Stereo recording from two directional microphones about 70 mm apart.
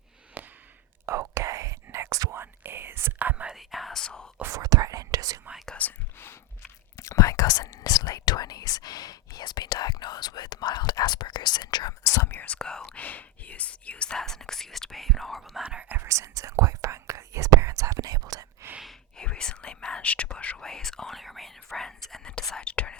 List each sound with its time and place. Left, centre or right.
0.4 s a sound: right
1.0 s whispering: right
2.3 s whispering: right
3.4 s whispering: centre
4.0 s speech: centre
4.4 s whispering: right
6.1 s a sound: left
6.9 s whispering: left
12.0 s whispering: left
12.4 s whispering: centre
13.0 s whispering: left; by 15.6 s centre
15.6 s whispering: centre
16.0 s whispering: right
19.1 s whispering: centre